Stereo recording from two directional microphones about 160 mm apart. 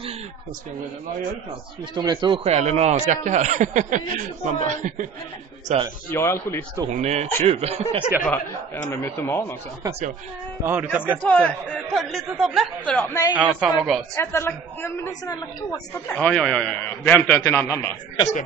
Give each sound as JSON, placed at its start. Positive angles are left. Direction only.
{"t": 2.0, "sound": "a man's voice", "side_deg": -25}
{"t": 2.4, "sound": "speech", "side_deg": -40}
{"t": 6.0, "sound": "a man's voice", "side_deg": 15}
{"t": 6.9, "sound": "speech", "side_deg": -45}
{"t": 8.8, "sound": "a man's voice", "side_deg": 15}
{"t": 10.6, "sound": "a man's voice", "side_deg": -15}
{"t": 11.2, "sound": "a man's voice", "side_deg": 10}
{"t": 13.3, "sound": "a man's voice", "side_deg": -5}
{"t": 14.1, "sound": "a man's voice", "side_deg": 15}
{"t": 16.2, "sound": "a man's voice", "side_deg": 5}